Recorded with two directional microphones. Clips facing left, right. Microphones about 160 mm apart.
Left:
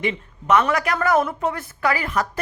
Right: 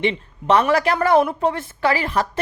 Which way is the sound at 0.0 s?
30° right (ahead or behind).